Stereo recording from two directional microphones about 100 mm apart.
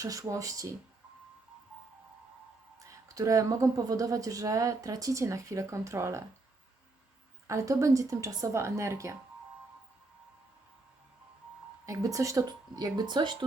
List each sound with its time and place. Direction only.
0.0 s a woman's voice: 35° right (ahead or behind)
3.2 s a woman's voice: 35° right (ahead or behind)
7.4 s a woman's voice: 30° right (ahead or behind)
11.9 s a woman's voice: 35° right (ahead or behind)